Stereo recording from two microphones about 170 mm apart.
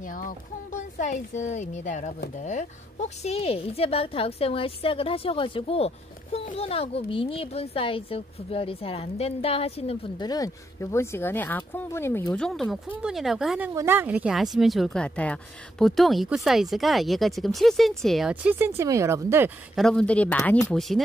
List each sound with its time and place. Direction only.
0.0 s a woman's voice: 50° left (ahead or behind); by 9.9 s 35° left (ahead or behind)
10.1 s speech: 25° left (ahead or behind)
12.4 s speech: centre (ahead or behind)
13.7 s speech: 15° right (ahead or behind)
19.7 s speech: 5° left (ahead or behind)